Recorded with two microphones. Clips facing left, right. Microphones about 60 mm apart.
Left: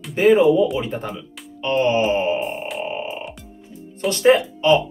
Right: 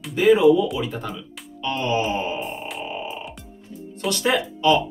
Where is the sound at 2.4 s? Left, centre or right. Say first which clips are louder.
Left 4 dB; centre.